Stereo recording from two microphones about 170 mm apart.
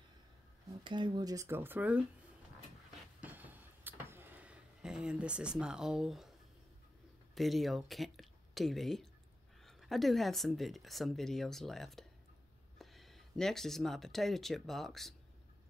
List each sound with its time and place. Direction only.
0.8 s speech: 25° right (ahead or behind); by 2.0 s 10° right (ahead or behind)
3.2 s a sound: 10° right (ahead or behind)
7.3 s speech: centre (ahead or behind)